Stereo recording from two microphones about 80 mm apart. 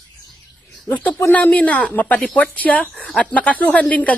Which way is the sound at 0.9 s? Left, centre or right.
Centre.